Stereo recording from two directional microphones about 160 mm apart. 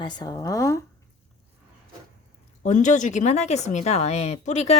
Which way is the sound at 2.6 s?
50° left (ahead or behind).